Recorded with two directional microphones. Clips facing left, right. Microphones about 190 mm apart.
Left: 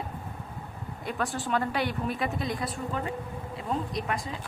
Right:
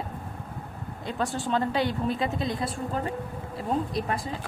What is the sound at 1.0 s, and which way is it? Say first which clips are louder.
A woman's voice: right 2 dB; 20° right (ahead or behind).